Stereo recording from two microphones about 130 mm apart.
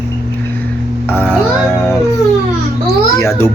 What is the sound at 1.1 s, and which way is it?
Speech, 15° left (ahead or behind).